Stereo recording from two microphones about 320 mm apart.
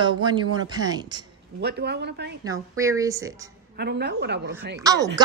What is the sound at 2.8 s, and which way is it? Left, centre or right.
Speech, centre.